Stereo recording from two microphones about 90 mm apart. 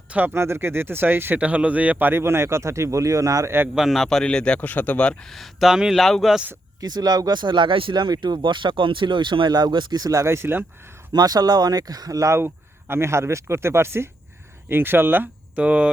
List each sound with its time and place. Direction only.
0.1 s speech: 20° right (ahead or behind); by 3.5 s 40° right (ahead or behind)
3.8 s a man's voice: centre (ahead or behind)
6.7 s speech: 45° right (ahead or behind); by 10.7 s 25° right (ahead or behind)
11.1 s speech: 45° right (ahead or behind); by 15.9 s 15° right (ahead or behind)